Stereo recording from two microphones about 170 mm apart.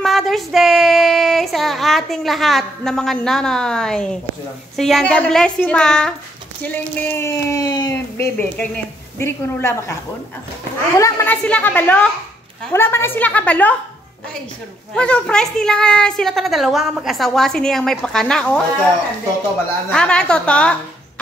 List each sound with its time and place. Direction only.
0.0 s child singing: centre (ahead or behind)
4.7 s a woman's voice: centre (ahead or behind); by 8.3 s 25° left (ahead or behind)
8.4 s speech: 10° left (ahead or behind)
11.0 s speech: 15° left (ahead or behind)
15.0 s a woman's voice: 5° left (ahead or behind)
19.9 s a woman's voice: 5° left (ahead or behind)